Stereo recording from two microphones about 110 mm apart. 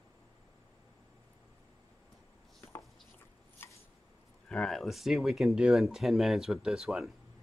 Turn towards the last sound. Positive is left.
turn(degrees=-5)  # may be behind; listen again after turning